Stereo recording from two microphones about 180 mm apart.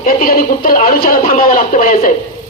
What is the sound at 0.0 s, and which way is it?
A woman's voice, 50° left (ahead or behind).